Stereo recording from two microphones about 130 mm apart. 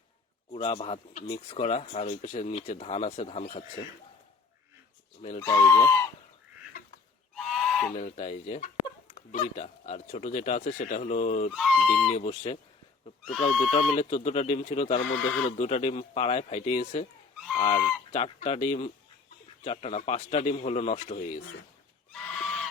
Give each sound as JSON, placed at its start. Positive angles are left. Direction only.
{"t": 0.5, "sound": "speech", "side_deg": 45}
{"t": 2.0, "sound": "speech", "side_deg": 65}
{"t": 5.4, "sound": "speech", "side_deg": 25}
{"t": 7.3, "sound": "goose", "side_deg": 0}
{"t": 7.9, "sound": "speech", "side_deg": 55}
{"t": 11.5, "sound": "speech", "side_deg": 0}
{"t": 12.1, "sound": "speech", "side_deg": 55}
{"t": 13.5, "sound": "speech", "side_deg": 0}
{"t": 13.7, "sound": "speech", "side_deg": 50}
{"t": 15.0, "sound": "speech", "side_deg": 5}
{"t": 15.5, "sound": "speech", "side_deg": 55}
{"t": 18.1, "sound": "speech", "side_deg": 55}
{"t": 22.1, "sound": "goose", "side_deg": 5}